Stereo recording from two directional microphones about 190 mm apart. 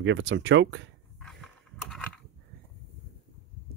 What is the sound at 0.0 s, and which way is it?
Speech, 75° right (ahead or behind).